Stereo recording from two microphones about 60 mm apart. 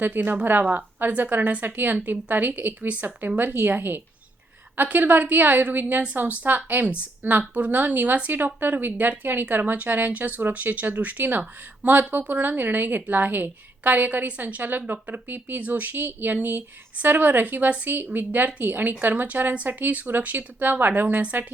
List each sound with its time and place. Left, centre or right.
0.0 s a woman's voice: right